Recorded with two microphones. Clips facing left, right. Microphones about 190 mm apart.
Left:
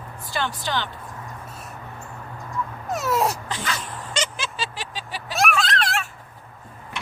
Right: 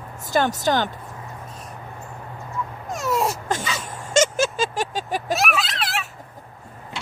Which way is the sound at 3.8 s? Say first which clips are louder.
Right 9 dB; 45° right (ahead or behind).